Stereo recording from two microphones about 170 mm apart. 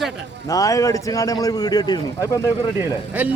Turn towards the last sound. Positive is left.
turn(degrees=-10)  # may be behind; listen again after turning